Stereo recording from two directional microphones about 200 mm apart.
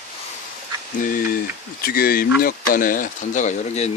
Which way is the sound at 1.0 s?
40° left (ahead or behind).